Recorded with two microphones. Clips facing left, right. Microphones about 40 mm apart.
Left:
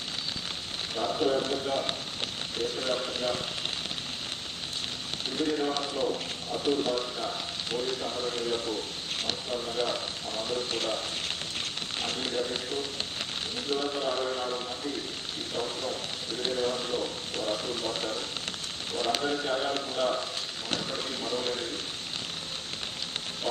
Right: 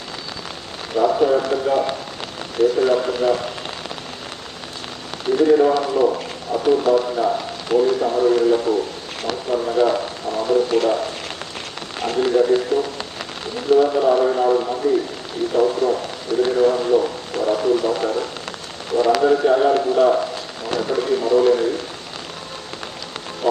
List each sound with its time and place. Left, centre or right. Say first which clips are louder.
1.0 s speech: right 11 dB; right
1.3 s a man's voice: right 10 dB; right
2.6 s a man's voice: right 15 dB; right
5.3 s a man's voice: right 15 dB; right
5.9 s a man's voice: right 12 dB; right
6.5 s a man's voice: right 12 dB; right
9.6 s a man's voice: right 15 dB; right
23.4 s speech: right 14 dB; right